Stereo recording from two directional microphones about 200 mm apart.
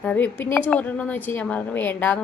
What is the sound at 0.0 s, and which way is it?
A woman's voice, 10° left (ahead or behind).